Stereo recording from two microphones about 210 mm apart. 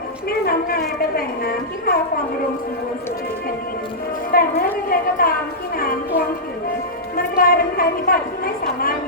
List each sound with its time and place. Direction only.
0.3 s a woman's voice: 45° left (ahead or behind)
4.3 s a woman's voice: 45° left (ahead or behind)
5.7 s a sound: 45° left (ahead or behind)
7.2 s a woman's voice: 45° left (ahead or behind)